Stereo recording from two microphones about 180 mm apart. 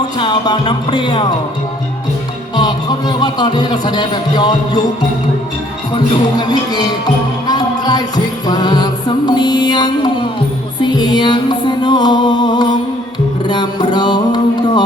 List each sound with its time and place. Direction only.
0.2 s speech: 25° left (ahead or behind)
2.6 s speech: 25° left (ahead or behind)
6.3 s speech: 25° left (ahead or behind)
7.4 s music: 20° left (ahead or behind)